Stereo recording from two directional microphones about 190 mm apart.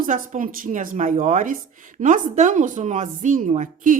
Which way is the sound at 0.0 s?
45° right (ahead or behind).